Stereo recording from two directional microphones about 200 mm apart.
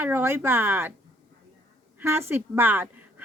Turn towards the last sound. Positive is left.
turn(degrees=-10)  # may be behind; listen again after turning